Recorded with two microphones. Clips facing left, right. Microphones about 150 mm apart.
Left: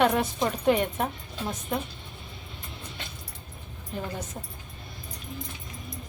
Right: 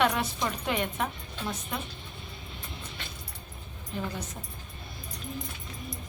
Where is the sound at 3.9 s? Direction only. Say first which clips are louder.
Even; 45° left (ahead or behind).